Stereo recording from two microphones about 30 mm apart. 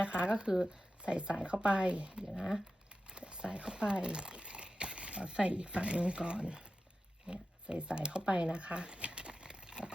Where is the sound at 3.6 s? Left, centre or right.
Right.